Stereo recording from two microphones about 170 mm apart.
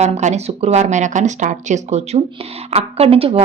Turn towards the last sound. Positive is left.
turn(degrees=-35)  # may be behind; listen again after turning